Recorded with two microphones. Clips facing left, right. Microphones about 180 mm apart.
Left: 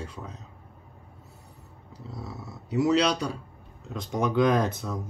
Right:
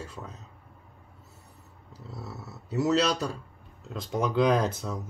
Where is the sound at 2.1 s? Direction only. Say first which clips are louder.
Left 1 dB; 5° right (ahead or behind).